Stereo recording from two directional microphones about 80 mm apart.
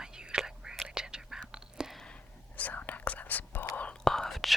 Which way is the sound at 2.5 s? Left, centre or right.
Left.